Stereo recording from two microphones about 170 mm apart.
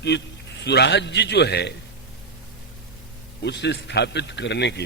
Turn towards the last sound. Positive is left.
turn(degrees=85)